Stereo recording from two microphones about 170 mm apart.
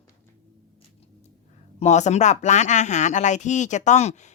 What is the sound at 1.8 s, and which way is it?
Speech, 45° left (ahead or behind).